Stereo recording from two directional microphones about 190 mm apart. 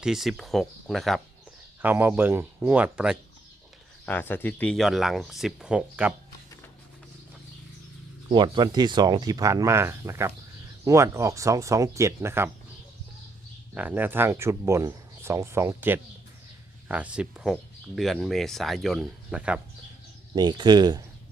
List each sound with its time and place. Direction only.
0.0 s speech: centre (ahead or behind)
1.8 s speech: 10° right (ahead or behind)
4.0 s speech: 10° left (ahead or behind); by 6.1 s 5° right (ahead or behind)
8.3 s speech: 25° right (ahead or behind)
13.7 s speech: 10° right (ahead or behind)
20.3 s speech: 20° right (ahead or behind)